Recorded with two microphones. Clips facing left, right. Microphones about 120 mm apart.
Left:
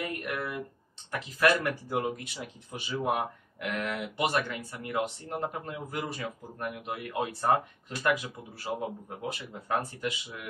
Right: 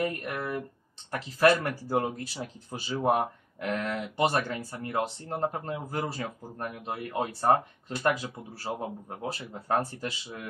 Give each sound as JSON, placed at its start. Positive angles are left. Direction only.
{"t": 0.0, "sound": "speech", "side_deg": -35}